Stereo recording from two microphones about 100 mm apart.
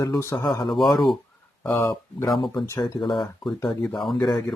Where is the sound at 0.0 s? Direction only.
35° left (ahead or behind).